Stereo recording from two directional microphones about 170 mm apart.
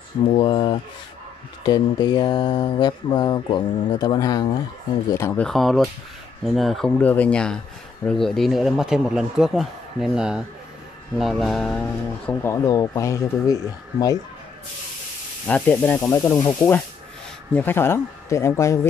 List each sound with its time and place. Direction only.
0.4 s speech: 30° left (ahead or behind)
5.5 s speech: centre (ahead or behind)
12.3 s speech: 15° left (ahead or behind)
15.4 s speech: 5° left (ahead or behind)